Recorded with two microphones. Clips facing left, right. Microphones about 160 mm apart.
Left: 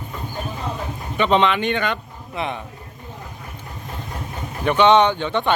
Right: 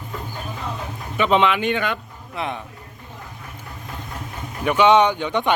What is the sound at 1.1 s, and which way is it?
Speech, 5° right (ahead or behind).